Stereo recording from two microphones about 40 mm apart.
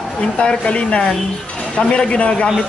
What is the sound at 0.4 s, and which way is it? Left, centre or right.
Speech, left.